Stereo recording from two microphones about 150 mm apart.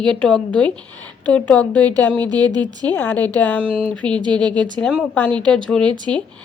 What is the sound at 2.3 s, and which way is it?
Speech, 25° right (ahead or behind).